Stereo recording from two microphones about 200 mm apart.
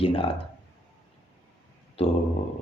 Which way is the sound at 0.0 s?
25° left (ahead or behind).